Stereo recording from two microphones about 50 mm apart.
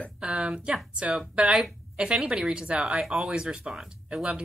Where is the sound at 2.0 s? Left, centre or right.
Right.